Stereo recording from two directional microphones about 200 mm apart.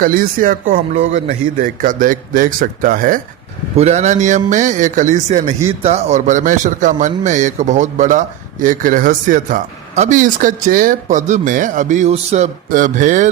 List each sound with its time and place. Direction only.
0.0 s a man's voice: 45° right (ahead or behind)